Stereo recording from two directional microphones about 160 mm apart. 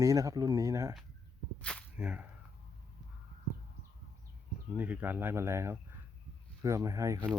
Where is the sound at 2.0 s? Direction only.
5° right (ahead or behind).